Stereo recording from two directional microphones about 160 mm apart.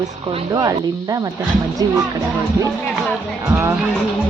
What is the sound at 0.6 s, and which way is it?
Speech, 20° right (ahead or behind).